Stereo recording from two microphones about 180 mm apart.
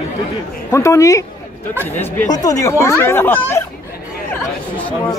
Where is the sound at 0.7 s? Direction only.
15° left (ahead or behind).